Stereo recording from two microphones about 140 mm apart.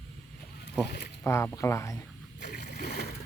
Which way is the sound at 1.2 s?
20° left (ahead or behind).